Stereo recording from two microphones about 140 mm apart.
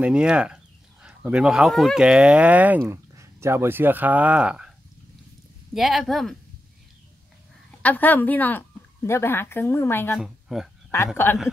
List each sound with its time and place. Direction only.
0.0 s speech: 5° right (ahead or behind)
2.8 s speech: 20° right (ahead or behind)
5.8 s speech: centre (ahead or behind)
7.8 s a woman's voice: 10° left (ahead or behind)
10.2 s speech: 5° right (ahead or behind)
11.2 s a woman's voice: 15° left (ahead or behind)